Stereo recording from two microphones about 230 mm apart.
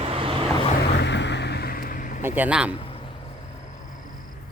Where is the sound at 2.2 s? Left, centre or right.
Centre.